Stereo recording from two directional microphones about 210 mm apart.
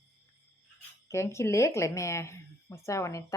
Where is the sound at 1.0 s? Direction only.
15° left (ahead or behind).